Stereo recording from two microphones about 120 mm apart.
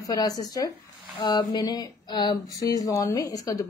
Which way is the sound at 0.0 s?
30° left (ahead or behind).